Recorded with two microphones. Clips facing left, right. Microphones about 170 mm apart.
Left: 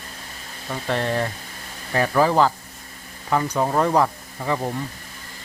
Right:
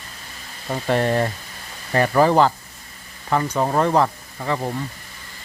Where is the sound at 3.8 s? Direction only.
5° left (ahead or behind).